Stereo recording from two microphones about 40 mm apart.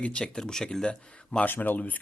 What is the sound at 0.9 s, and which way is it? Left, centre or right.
Speech, left.